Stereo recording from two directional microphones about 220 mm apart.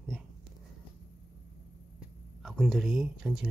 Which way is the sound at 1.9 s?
Centre (ahead or behind).